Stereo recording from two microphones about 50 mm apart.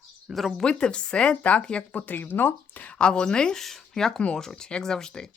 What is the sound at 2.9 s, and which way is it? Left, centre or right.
Speech, left.